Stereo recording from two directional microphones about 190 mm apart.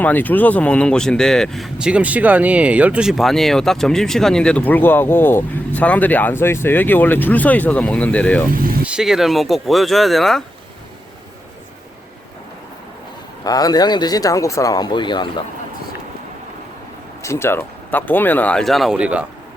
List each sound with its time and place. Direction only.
0.0 s speech: 10° left (ahead or behind)
8.8 s speech: 5° right (ahead or behind)
13.4 s speech: 20° left (ahead or behind)
17.2 s speech: 15° left (ahead or behind); by 19.2 s 5° right (ahead or behind)